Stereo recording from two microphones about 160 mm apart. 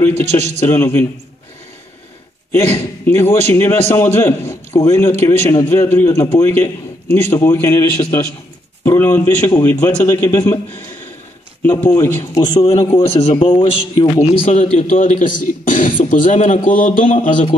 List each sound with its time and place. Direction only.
0.1 s a man's voice: 45° right (ahead or behind)
0.7 s a man's voice: 15° left (ahead or behind)
2.5 s a man's voice: 15° left (ahead or behind)
11.8 s a man's voice: 15° left (ahead or behind)
12.9 s a man's voice: 35° left (ahead or behind); by 17.3 s 55° left (ahead or behind)